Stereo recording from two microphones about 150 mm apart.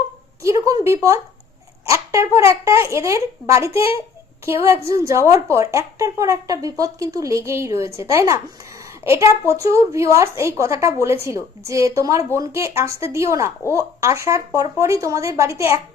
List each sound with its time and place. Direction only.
0.4 s a woman's voice: 20° right (ahead or behind)